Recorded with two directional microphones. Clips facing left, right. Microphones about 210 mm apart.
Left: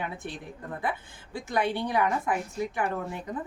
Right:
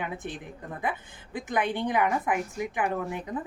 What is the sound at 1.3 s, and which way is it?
A woman's voice, 20° right (ahead or behind).